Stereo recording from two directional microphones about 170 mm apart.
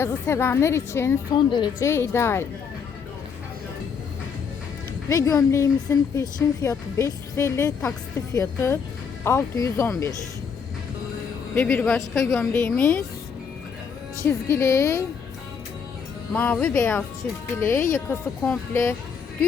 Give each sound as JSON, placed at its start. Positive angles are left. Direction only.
{"t": 0.0, "sound": "a woman's voice", "side_deg": 15}
{"t": 1.4, "sound": "a woman's voice", "side_deg": 25}
{"t": 1.9, "sound": "a woman's voice", "side_deg": 15}
{"t": 5.0, "sound": "a woman's voice", "side_deg": 20}
{"t": 11.5, "sound": "a woman's voice", "side_deg": 10}
{"t": 14.3, "sound": "a woman's voice", "side_deg": 15}
{"t": 16.3, "sound": "a woman's voice", "side_deg": 10}